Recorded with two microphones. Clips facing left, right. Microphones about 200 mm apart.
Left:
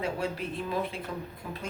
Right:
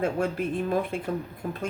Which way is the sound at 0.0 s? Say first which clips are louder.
Right 6 dB; 50° right (ahead or behind).